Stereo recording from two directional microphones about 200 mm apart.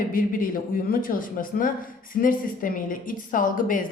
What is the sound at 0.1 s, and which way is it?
A woman's voice, 45° left (ahead or behind).